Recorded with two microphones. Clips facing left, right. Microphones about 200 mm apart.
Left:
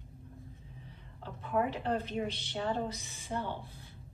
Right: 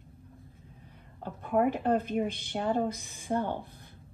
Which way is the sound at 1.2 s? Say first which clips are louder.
Right 5 dB; 50° right (ahead or behind).